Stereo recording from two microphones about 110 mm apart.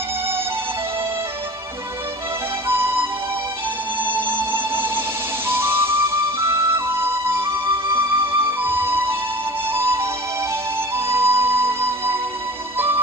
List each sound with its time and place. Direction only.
2.7 s music: 20° right (ahead or behind)
4.0 s music: 20° right (ahead or behind)
7.9 s music: 20° right (ahead or behind)
11.1 s music: 25° right (ahead or behind)